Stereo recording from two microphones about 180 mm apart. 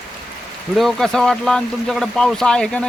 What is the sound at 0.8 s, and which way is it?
Speech, centre (ahead or behind).